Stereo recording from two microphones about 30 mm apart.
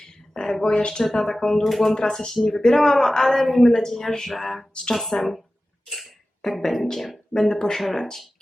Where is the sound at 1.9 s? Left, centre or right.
Centre.